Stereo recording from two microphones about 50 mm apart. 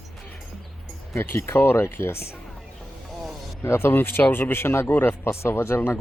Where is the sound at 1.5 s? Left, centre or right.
Left.